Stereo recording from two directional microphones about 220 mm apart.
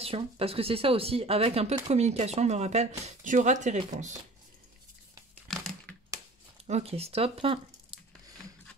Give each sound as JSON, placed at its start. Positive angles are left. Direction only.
{"t": 0.0, "sound": "speech", "side_deg": -25}
{"t": 5.5, "sound": "typing", "side_deg": 0}
{"t": 5.9, "sound": "typewriter", "side_deg": 5}
{"t": 6.6, "sound": "speech", "side_deg": -25}